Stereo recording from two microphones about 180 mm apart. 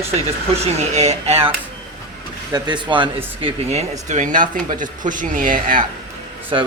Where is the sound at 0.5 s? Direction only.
35° right (ahead or behind).